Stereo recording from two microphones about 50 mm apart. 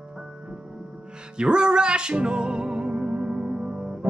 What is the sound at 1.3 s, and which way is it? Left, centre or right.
Music, centre.